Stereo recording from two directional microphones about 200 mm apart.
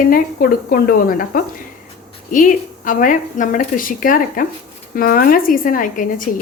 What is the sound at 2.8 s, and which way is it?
A woman's voice, 40° left (ahead or behind).